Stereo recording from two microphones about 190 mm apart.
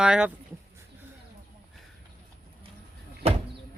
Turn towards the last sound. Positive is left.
turn(degrees=-30)  # may be behind; listen again after turning